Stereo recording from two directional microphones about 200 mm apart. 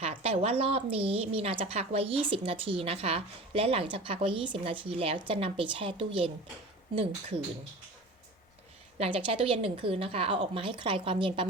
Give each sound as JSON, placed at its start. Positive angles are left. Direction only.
{"t": 0.0, "sound": "a woman's voice", "side_deg": -30}
{"t": 9.0, "sound": "a woman's voice", "side_deg": -25}